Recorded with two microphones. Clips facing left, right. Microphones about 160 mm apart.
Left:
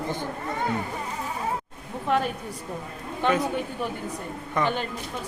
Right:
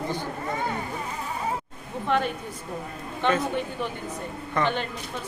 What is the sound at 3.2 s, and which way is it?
Speech, 10° left (ahead or behind).